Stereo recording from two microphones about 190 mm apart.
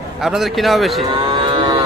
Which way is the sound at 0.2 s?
Centre (ahead or behind).